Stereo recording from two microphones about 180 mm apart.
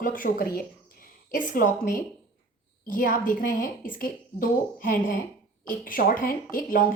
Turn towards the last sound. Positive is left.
turn(degrees=50)  # may be behind; listen again after turning